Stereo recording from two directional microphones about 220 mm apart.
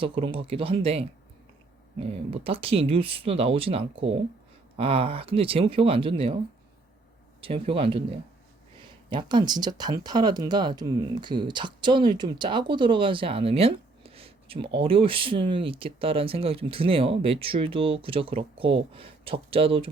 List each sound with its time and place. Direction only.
0.0 s speech: 25° right (ahead or behind)
7.4 s speech: 25° right (ahead or behind)